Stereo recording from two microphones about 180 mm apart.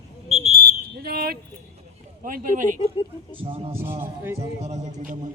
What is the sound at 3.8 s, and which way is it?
Speech, 15° right (ahead or behind).